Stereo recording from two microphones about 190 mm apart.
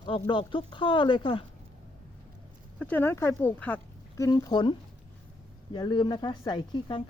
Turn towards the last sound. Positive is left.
turn(degrees=20)  # may be behind; listen again after turning